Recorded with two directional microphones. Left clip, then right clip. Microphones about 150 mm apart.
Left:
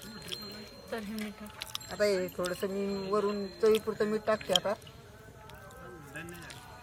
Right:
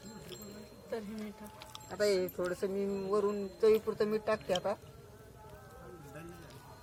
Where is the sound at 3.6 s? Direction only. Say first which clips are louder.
Left 1 dB; 15° right (ahead or behind).